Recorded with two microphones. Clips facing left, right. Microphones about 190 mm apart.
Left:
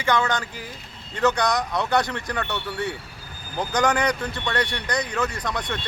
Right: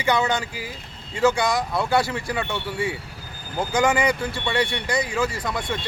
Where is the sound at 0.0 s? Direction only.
10° right (ahead or behind).